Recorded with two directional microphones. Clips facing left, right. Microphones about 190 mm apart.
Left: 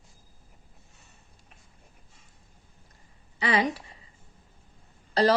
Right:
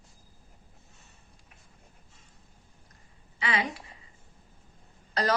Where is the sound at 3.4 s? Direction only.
40° left (ahead or behind).